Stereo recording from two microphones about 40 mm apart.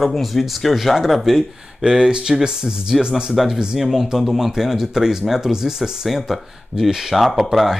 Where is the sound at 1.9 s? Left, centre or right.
Centre.